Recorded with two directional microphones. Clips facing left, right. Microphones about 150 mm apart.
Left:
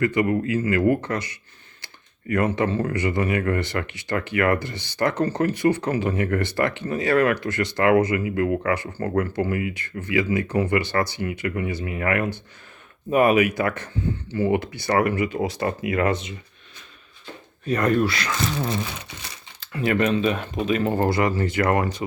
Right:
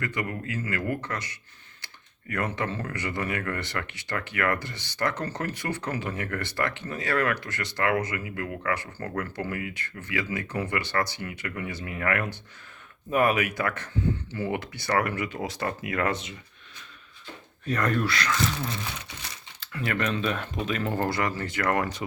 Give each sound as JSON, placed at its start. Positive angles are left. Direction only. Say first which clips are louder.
{"t": 0.0, "sound": "speech", "louder": "left 11 dB", "side_deg": 15}
{"t": 2.3, "sound": "speech", "louder": "left 8 dB", "side_deg": 15}
{"t": 17.7, "sound": "speech", "louder": "left 6 dB", "side_deg": 15}
{"t": 19.5, "sound": "speech", "louder": "left 8 dB", "side_deg": 20}